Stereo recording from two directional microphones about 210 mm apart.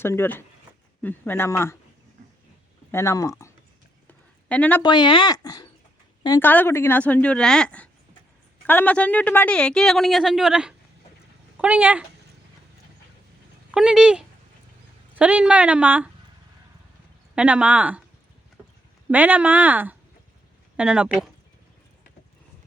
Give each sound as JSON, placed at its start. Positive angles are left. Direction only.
{"t": 0.0, "sound": "speech", "side_deg": 10}
{"t": 2.9, "sound": "speech", "side_deg": 15}
{"t": 4.0, "sound": "a sound", "side_deg": 5}
{"t": 4.8, "sound": "a woman's voice", "side_deg": 20}
{"t": 13.7, "sound": "a woman's voice", "side_deg": -5}
{"t": 17.3, "sound": "a woman's voice", "side_deg": -5}
{"t": 19.1, "sound": "a woman's voice", "side_deg": -5}